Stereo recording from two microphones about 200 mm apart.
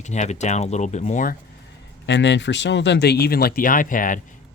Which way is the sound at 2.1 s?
60° left (ahead or behind).